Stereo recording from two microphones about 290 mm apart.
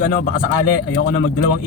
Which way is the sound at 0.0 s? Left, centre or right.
Left.